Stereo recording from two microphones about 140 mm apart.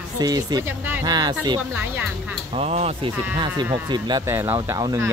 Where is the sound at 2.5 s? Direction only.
50° right (ahead or behind).